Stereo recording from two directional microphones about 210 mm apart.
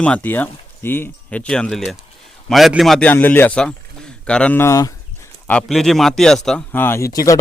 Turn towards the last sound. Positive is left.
turn(degrees=15)  # may be behind; listen again after turning